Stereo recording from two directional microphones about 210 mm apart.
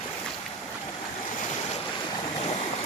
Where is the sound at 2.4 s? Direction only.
25° left (ahead or behind).